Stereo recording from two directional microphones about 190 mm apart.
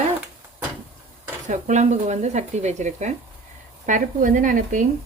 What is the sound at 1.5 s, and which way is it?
Speech, 40° right (ahead or behind).